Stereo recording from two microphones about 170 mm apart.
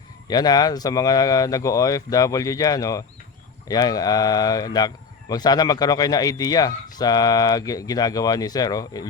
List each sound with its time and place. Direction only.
0.3 s a man's voice: 25° left (ahead or behind)